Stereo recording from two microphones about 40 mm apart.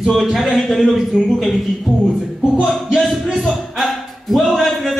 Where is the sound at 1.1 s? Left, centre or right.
Right.